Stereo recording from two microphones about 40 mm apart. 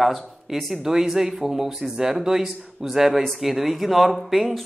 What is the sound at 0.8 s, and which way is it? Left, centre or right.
Speech, centre.